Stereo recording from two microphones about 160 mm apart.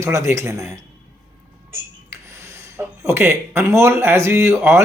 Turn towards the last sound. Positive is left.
turn(degrees=-15)  # may be behind; listen again after turning